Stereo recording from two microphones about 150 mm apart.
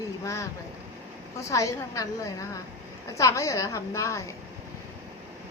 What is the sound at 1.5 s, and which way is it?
A woman's voice, 20° left (ahead or behind).